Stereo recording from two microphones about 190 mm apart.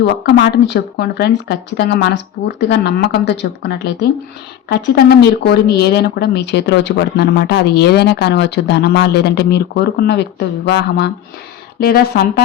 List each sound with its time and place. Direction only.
0.0 s speech: 60° left (ahead or behind)